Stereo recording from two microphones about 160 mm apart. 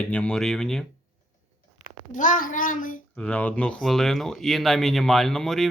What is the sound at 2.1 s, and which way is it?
Speech, 55° left (ahead or behind).